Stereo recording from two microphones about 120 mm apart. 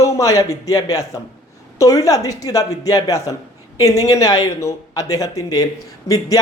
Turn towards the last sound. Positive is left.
turn(degrees=30)  # may be behind; listen again after turning